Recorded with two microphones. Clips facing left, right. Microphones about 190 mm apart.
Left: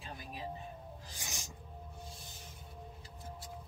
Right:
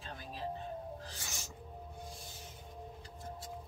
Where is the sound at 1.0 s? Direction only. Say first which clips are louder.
Right 1 dB; 15° left (ahead or behind).